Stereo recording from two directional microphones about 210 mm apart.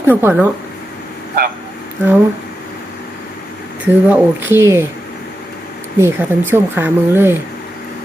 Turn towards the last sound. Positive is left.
turn(degrees=-10)  # may be behind; listen again after turning